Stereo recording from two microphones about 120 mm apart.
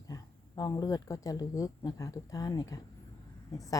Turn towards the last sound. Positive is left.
turn(degrees=30)  # may be behind; listen again after turning